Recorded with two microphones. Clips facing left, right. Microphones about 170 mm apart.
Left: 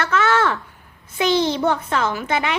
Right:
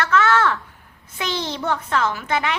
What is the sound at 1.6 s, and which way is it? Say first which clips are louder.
Speech: left 2 dB; 20° left (ahead or behind).